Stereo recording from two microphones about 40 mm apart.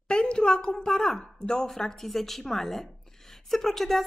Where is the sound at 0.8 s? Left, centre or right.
Centre.